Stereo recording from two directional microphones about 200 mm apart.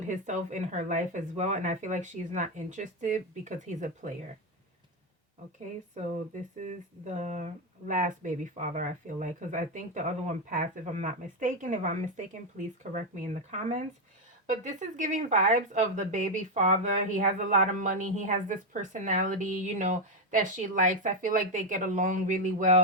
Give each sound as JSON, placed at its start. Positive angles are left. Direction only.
{"t": 0.0, "sound": "speech", "side_deg": -40}
{"t": 5.9, "sound": "speech", "side_deg": -35}